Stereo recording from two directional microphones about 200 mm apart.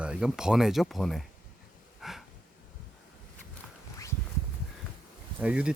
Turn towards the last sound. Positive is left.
turn(degrees=-5)  # may be behind; listen again after turning